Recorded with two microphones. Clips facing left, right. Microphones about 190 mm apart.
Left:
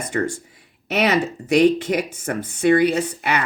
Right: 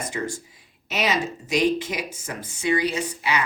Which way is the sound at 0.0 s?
60° left (ahead or behind).